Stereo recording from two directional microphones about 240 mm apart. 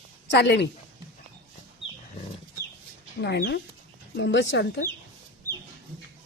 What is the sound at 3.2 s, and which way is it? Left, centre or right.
Speech, left.